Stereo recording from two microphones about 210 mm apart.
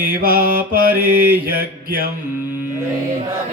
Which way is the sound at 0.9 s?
10° right (ahead or behind).